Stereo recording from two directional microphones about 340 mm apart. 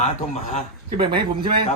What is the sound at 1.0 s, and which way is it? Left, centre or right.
Speech, centre.